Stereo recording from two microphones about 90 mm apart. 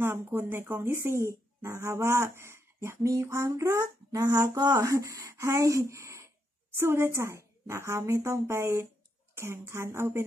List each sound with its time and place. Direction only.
0.0 s speech: 25° right (ahead or behind)